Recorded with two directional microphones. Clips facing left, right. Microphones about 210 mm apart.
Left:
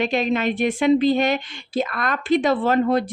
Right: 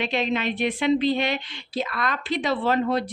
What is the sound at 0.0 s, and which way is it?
A woman's voice, 45° left (ahead or behind).